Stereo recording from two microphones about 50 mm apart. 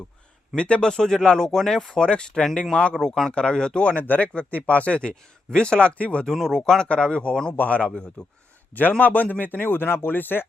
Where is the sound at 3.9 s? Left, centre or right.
Left.